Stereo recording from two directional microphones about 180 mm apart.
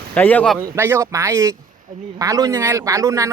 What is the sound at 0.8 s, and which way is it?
Speech, 15° right (ahead or behind).